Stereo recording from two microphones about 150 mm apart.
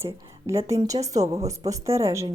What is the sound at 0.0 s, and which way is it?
Speech, 20° right (ahead or behind).